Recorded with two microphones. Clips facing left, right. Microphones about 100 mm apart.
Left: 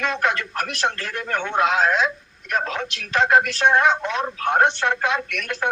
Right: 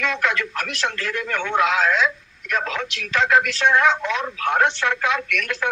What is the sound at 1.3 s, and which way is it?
Speech, 40° left (ahead or behind).